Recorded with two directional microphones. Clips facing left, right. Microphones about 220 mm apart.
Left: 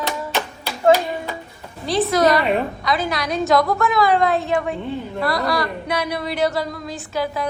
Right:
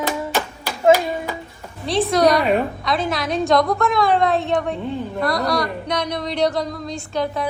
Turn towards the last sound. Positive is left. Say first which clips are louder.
# right 1 dB
turn(degrees=5)  # may be behind; listen again after turning